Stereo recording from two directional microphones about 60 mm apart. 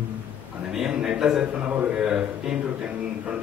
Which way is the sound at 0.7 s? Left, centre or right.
Centre.